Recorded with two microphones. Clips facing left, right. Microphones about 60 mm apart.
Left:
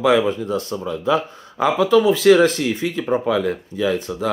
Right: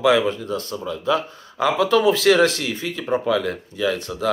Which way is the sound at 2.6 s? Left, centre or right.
Left.